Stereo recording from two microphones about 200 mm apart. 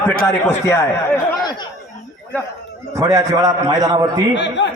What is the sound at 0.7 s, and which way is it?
Speech, 15° left (ahead or behind).